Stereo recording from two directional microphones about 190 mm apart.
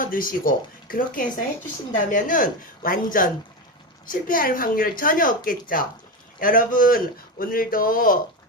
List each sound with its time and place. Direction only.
0.0 s a woman's voice: 45° left (ahead or behind)